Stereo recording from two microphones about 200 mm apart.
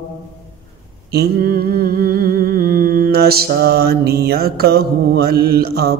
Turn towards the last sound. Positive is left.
turn(degrees=-50)  # may be behind; listen again after turning